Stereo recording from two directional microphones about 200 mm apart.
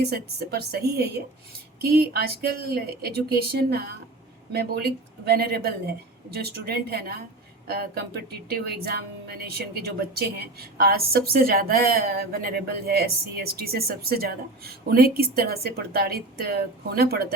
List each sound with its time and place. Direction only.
0.0 s speech: 50° right (ahead or behind)